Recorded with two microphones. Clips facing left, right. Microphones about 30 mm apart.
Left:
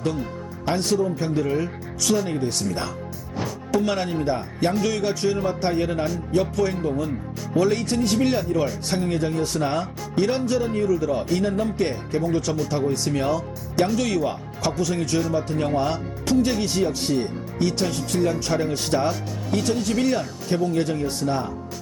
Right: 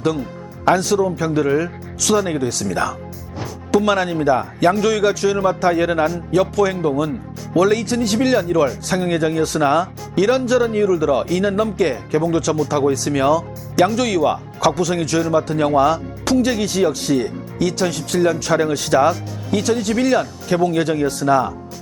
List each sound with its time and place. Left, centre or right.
0.8 s speech: right
3.4 s music: centre
3.7 s speech: right
10.8 s speech: right
19.5 s speech: right